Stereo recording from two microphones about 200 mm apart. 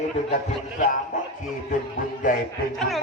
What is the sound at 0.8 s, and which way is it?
A man's voice, 40° left (ahead or behind).